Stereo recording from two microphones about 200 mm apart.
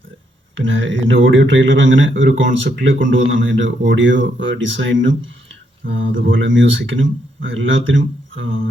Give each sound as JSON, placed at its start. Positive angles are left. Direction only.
{"t": 0.5, "sound": "speech", "side_deg": -70}